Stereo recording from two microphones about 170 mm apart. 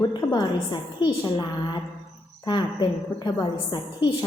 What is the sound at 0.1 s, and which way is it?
A woman's voice, 25° left (ahead or behind).